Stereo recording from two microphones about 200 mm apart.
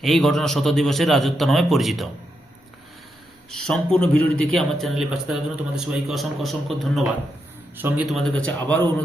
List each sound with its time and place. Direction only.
0.0 s a man's voice: centre (ahead or behind)
3.7 s a man's voice: 5° left (ahead or behind)
4.1 s a man's voice: 90° right
4.5 s a man's voice: centre (ahead or behind)